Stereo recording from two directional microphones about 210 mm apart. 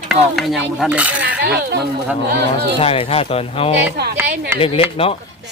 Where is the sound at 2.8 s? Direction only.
25° left (ahead or behind).